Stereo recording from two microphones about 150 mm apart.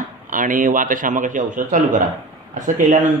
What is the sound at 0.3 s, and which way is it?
Speech, 60° right (ahead or behind).